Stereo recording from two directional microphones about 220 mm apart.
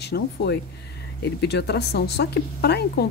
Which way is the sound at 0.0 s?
50° left (ahead or behind).